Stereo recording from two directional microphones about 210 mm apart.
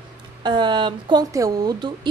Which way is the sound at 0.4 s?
20° right (ahead or behind).